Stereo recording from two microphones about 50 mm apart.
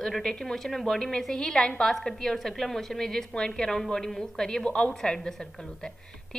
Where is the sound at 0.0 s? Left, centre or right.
Centre.